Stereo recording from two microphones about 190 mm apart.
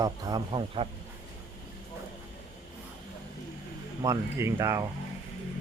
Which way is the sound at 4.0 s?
15° right (ahead or behind).